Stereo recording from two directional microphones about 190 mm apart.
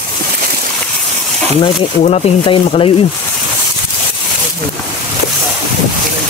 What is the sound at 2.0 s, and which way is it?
Speech, 30° left (ahead or behind).